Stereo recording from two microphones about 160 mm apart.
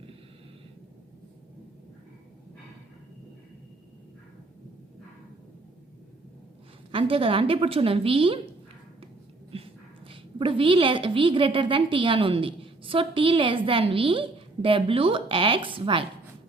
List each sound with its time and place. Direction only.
6.9 s a woman's voice: 35° right (ahead or behind)
9.5 s dog: 35° right (ahead or behind)
10.1 s a woman's voice: 35° right (ahead or behind)